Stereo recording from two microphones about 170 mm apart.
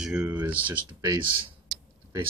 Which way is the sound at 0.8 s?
25° right (ahead or behind).